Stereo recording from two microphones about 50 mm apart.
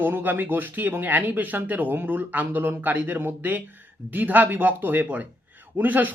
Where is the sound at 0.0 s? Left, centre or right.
Right.